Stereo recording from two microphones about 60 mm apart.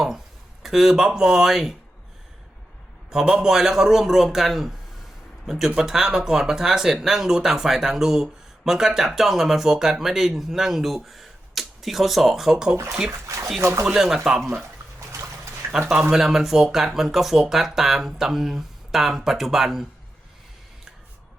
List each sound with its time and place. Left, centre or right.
0.6 s speech: centre
3.1 s speech: centre
13.1 s speech: right
13.8 s speech: centre
15.9 s speech: centre